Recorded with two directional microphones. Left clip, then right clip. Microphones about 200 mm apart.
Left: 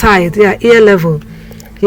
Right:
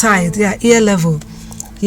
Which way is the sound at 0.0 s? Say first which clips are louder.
Left 6 dB; 15° left (ahead or behind).